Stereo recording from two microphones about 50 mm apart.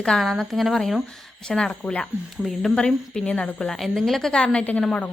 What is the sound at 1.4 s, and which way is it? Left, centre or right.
Speech, centre.